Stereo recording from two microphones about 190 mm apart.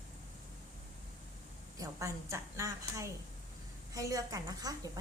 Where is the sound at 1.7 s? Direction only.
15° right (ahead or behind).